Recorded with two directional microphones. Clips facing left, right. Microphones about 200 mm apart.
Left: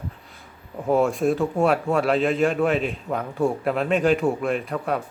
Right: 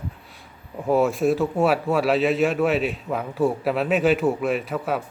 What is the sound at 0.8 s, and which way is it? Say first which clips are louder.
A man's voice: even; centre (ahead or behind).